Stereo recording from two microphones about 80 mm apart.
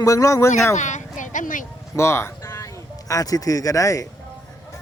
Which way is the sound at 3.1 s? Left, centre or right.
Left.